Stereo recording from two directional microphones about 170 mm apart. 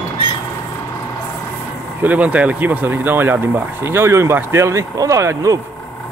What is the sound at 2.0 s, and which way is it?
Speech, 10° right (ahead or behind).